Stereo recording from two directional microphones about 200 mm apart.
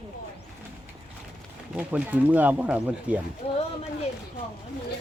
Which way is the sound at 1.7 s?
10° right (ahead or behind).